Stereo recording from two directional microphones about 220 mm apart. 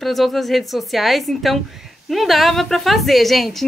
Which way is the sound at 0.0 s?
Centre (ahead or behind).